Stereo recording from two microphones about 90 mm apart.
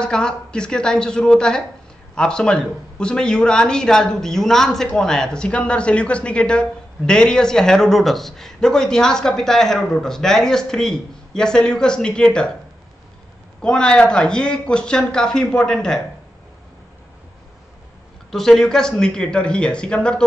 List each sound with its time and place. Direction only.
0.0 s speech: 10° left (ahead or behind)
13.6 s speech: 10° left (ahead or behind)
18.3 s speech: 5° left (ahead or behind)